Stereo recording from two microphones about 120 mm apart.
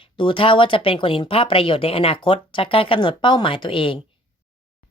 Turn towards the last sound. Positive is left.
turn(degrees=45)  # may be behind; listen again after turning